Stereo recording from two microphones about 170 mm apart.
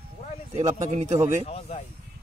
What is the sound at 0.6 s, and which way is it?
Speech, 20° right (ahead or behind).